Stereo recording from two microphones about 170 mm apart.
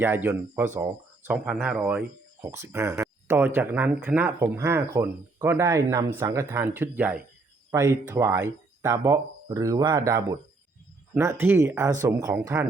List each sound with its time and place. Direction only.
0.0 s speech: 10° right (ahead or behind)